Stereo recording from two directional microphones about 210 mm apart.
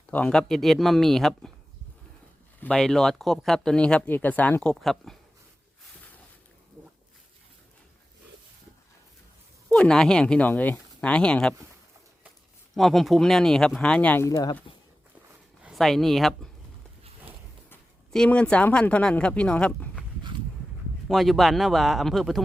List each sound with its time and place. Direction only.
0.1 s speech: 5° left (ahead or behind)
2.6 s speech: 5° left (ahead or behind)
9.6 s speech: 5° left (ahead or behind)
12.7 s speech: centre (ahead or behind); by 14.6 s 15° left (ahead or behind)
15.6 s speech: centre (ahead or behind)
17.7 s speech: 5° left (ahead or behind)
21.1 s speech: centre (ahead or behind)